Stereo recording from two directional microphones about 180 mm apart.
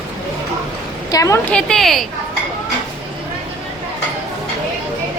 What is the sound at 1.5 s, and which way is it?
Speech, centre (ahead or behind).